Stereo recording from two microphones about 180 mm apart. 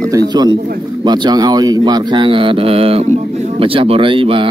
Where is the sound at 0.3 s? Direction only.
25° right (ahead or behind).